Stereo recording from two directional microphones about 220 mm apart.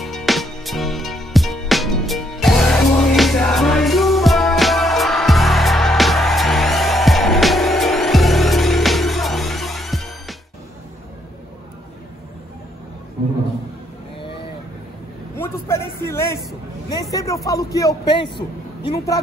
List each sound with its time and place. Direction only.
0.0 s music: centre (ahead or behind)
15.3 s a sound: 10° left (ahead or behind)
17.5 s a man's voice: 15° left (ahead or behind)